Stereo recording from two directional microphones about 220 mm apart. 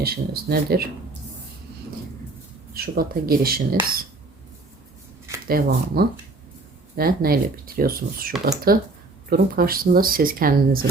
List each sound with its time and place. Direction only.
0.0 s speech: 45° right (ahead or behind)
2.7 s speech: 45° right (ahead or behind)
5.5 s speech: 45° right (ahead or behind)